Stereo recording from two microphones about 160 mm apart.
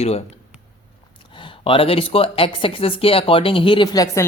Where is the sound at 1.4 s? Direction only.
35° left (ahead or behind).